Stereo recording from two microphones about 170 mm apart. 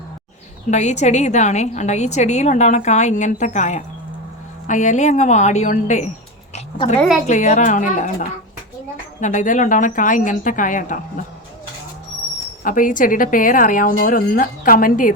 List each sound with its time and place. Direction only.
0.7 s a woman's voice: 45° left (ahead or behind)
7.3 s a woman's voice: 45° left (ahead or behind)
12.6 s a woman's voice: 50° left (ahead or behind)